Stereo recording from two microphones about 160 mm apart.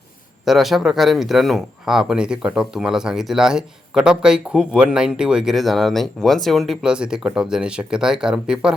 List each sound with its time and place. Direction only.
0.4 s speech: centre (ahead or behind)